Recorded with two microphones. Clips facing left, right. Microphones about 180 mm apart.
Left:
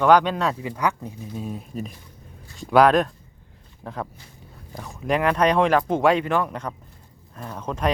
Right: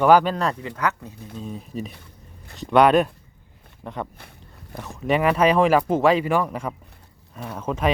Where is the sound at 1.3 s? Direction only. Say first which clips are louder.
Even; 5° left (ahead or behind).